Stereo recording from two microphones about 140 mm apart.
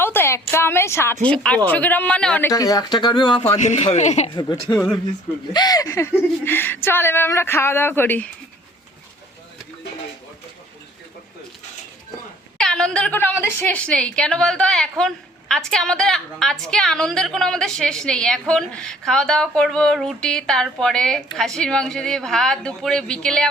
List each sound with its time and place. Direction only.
0.0 s a sound: 15° left (ahead or behind)
0.5 s speech: 15° left (ahead or behind)
2.5 s speech: 25° left (ahead or behind)
3.6 s a man's voice: 55° left (ahead or behind)
4.7 s a woman's voice: 5° left (ahead or behind)
5.5 s speech: 25° left (ahead or behind)
12.5 s a woman's voice: 5° left (ahead or behind)